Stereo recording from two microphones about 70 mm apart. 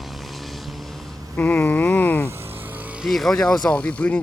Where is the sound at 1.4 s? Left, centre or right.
Left.